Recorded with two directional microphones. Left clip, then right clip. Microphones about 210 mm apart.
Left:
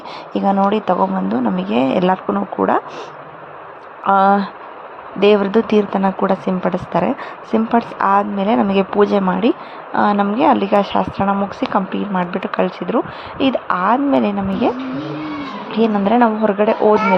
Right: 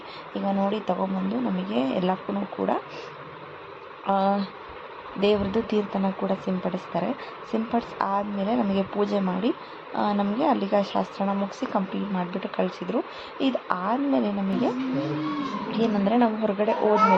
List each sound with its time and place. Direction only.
0.3 s a woman's voice: 30° left (ahead or behind)
4.0 s a woman's voice: 20° left (ahead or behind)
15.7 s a woman's voice: 20° left (ahead or behind)